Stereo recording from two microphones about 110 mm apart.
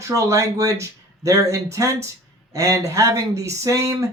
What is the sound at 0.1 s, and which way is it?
Speech, 30° right (ahead or behind).